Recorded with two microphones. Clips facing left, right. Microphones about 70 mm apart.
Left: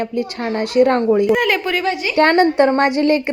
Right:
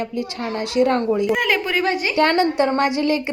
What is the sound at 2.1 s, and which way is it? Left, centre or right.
A woman's voice, left.